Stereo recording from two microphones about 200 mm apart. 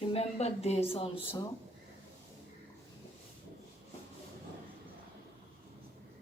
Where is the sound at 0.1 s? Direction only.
30° left (ahead or behind).